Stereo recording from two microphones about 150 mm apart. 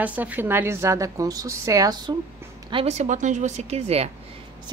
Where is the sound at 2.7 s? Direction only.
50° right (ahead or behind).